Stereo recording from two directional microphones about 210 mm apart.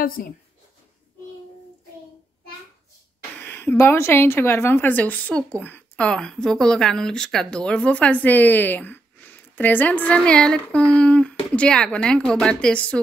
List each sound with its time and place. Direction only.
0.0 s speech: 40° left (ahead or behind)
3.3 s speech: 10° left (ahead or behind)